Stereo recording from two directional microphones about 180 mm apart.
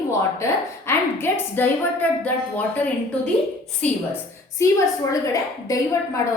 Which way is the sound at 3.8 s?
5° left (ahead or behind).